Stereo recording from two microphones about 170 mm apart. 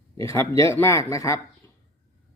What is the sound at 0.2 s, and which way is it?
Speech, 15° left (ahead or behind).